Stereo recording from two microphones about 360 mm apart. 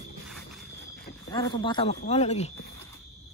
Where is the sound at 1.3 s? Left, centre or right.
Centre.